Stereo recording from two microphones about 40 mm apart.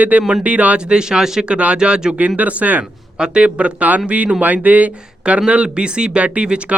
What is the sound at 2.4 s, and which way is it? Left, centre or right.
Speech, right.